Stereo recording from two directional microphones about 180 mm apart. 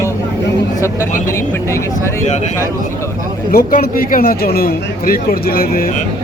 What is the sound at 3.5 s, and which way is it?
Speech, 55° left (ahead or behind).